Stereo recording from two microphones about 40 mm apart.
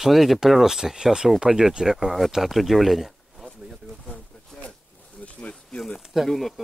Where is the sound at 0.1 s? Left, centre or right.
Centre.